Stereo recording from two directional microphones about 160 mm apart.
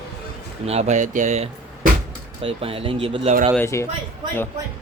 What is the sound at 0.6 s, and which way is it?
Speech, 40° right (ahead or behind).